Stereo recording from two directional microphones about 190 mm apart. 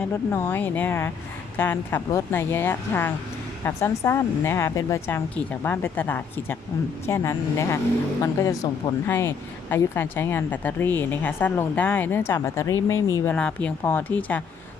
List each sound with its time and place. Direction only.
0.3 s a woman's voice: 10° left (ahead or behind)